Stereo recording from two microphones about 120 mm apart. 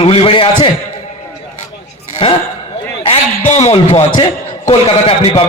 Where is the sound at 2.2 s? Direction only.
45° left (ahead or behind).